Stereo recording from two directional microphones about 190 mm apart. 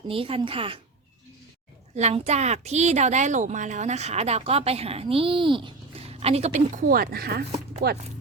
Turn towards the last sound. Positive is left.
turn(degrees=-55)  # may be behind; listen again after turning